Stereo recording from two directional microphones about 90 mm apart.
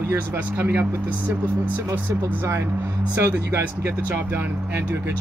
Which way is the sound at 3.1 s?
30° right (ahead or behind).